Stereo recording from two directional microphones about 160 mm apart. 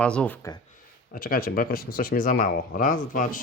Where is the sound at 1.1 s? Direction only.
65° left (ahead or behind).